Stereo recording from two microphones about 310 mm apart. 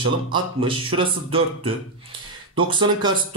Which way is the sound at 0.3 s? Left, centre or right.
Centre.